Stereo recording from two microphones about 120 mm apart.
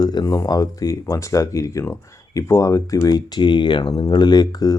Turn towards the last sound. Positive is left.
turn(degrees=30)  # may be behind; listen again after turning